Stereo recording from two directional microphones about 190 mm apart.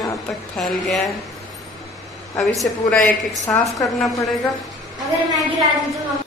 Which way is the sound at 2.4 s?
Centre (ahead or behind).